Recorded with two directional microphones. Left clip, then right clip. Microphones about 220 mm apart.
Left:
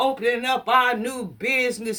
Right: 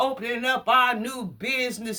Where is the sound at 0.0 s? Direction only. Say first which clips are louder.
Left 3 dB; 15° right (ahead or behind).